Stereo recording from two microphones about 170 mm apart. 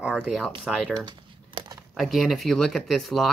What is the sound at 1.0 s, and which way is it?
Crumpling, 25° right (ahead or behind).